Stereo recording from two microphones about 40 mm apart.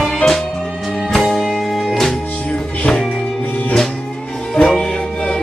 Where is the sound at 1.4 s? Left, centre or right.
Centre.